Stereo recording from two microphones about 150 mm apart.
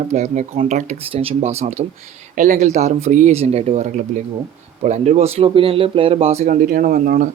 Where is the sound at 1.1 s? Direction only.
40° right (ahead or behind).